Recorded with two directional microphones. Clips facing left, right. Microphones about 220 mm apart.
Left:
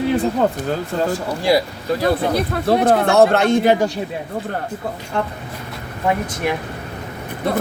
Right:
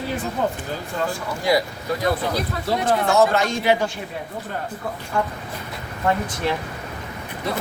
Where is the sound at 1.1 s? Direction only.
35° left (ahead or behind).